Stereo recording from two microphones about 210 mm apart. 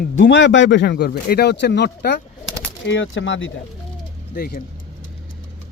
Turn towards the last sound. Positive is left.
turn(degrees=45)  # may be behind; listen again after turning